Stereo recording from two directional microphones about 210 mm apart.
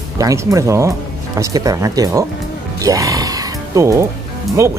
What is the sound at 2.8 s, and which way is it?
Music, 15° right (ahead or behind).